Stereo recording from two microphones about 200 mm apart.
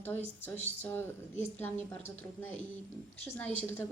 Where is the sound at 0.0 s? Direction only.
10° left (ahead or behind).